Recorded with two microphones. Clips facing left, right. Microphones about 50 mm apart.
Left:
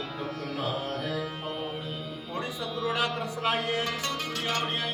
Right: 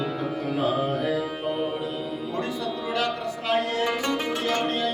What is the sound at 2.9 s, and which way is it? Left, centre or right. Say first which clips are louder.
Music: right 3 dB; centre.